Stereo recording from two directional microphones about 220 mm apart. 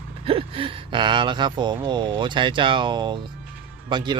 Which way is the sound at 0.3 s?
25° right (ahead or behind).